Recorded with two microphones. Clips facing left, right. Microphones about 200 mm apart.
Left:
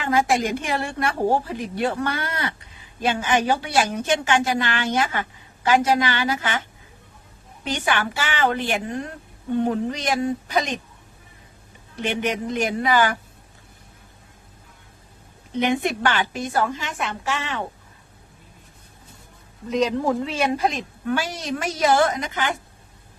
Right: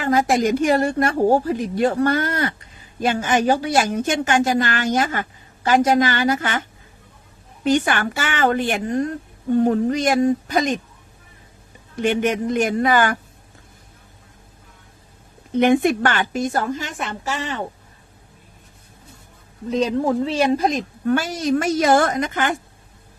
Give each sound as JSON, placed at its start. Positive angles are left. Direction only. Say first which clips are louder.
{"t": 0.0, "sound": "a woman's voice", "louder": "right 3 dB", "side_deg": -40}
{"t": 7.6, "sound": "a woman's voice", "louder": "right 6 dB", "side_deg": -45}
{"t": 12.0, "sound": "a woman's voice", "louder": "right 5 dB", "side_deg": -50}
{"t": 15.5, "sound": "a woman's voice", "louder": "right 6 dB", "side_deg": -50}
{"t": 20.2, "sound": "a woman's voice", "louder": "right 4 dB", "side_deg": -35}